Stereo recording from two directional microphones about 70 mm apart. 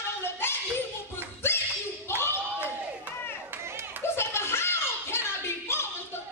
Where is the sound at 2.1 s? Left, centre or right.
Left.